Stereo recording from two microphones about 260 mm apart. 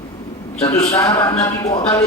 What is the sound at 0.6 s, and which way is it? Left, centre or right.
Speech, centre.